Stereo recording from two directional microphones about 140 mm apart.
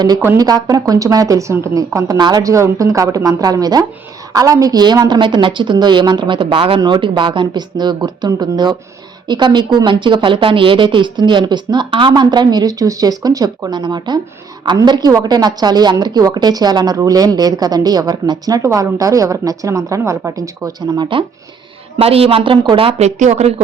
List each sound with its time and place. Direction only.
0.3 s a woman's voice: 25° right (ahead or behind); by 23.6 s 50° right (ahead or behind)